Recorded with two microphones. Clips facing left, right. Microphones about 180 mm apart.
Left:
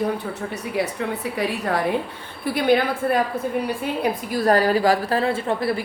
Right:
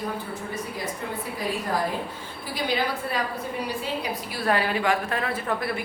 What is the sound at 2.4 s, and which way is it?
Speech, 60° left (ahead or behind).